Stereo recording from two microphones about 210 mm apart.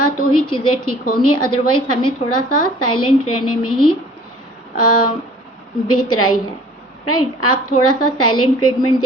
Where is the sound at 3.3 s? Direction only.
90° left.